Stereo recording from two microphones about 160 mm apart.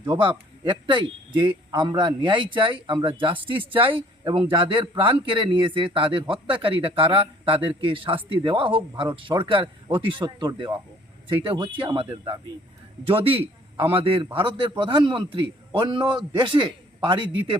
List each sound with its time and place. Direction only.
0.0 s speech: 30° right (ahead or behind)
13.1 s a man's voice: 35° right (ahead or behind)